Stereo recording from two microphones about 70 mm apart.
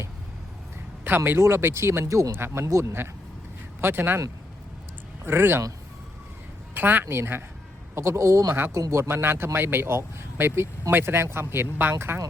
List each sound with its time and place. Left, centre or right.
1.0 s speech: right
3.8 s speech: right
5.2 s speech: right
6.7 s speech: right